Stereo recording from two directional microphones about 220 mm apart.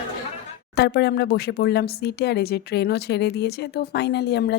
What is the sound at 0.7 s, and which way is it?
Speech, 45° left (ahead or behind).